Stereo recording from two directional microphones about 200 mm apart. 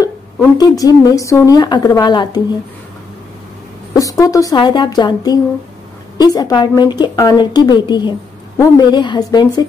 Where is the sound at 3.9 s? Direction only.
15° left (ahead or behind).